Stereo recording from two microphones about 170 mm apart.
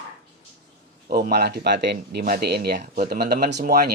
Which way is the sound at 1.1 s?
65° right (ahead or behind).